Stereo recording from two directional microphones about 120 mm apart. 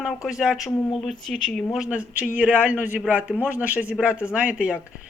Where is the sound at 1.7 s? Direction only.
10° right (ahead or behind).